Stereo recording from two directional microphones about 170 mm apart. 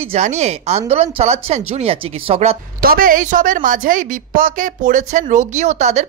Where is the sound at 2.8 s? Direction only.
55° right (ahead or behind).